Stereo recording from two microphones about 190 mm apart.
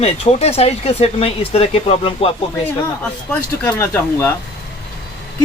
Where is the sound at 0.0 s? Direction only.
35° left (ahead or behind).